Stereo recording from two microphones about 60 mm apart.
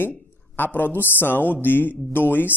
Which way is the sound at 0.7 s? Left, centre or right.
Left.